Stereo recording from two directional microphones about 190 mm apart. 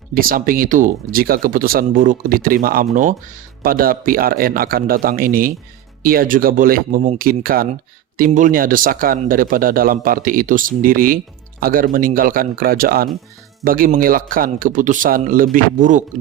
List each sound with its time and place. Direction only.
0.1 s a man's voice: 50° right (ahead or behind)